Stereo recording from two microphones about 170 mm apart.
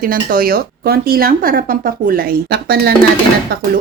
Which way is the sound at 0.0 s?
55° right (ahead or behind).